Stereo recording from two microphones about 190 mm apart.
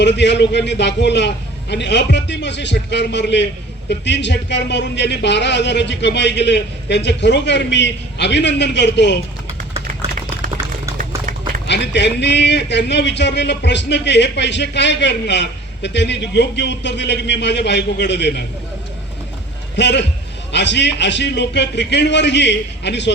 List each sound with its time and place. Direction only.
0.0 s a man's voice: 65° left (ahead or behind)
11.7 s a man's voice: 65° left (ahead or behind)
19.7 s a man's voice: 65° left (ahead or behind)